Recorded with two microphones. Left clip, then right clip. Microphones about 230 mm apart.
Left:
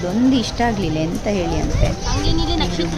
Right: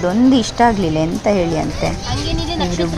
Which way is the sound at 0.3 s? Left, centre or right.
Centre.